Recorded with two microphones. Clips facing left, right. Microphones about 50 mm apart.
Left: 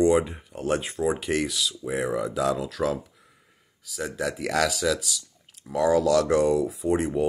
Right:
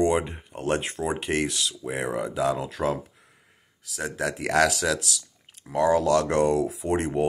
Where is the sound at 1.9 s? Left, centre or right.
Right.